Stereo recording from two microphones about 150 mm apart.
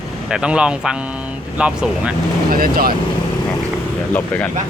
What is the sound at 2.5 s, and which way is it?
Speech, 75° right (ahead or behind).